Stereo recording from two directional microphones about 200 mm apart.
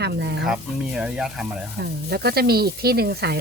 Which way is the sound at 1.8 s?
50° right (ahead or behind).